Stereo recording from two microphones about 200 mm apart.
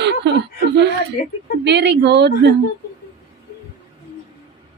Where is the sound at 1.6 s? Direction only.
60° right (ahead or behind).